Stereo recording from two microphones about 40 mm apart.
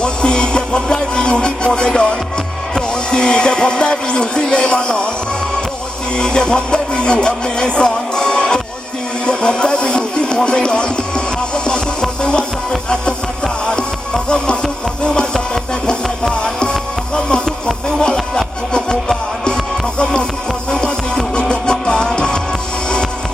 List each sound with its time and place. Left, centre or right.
0.0 s music: left
6.1 s music: left
20.0 s music: left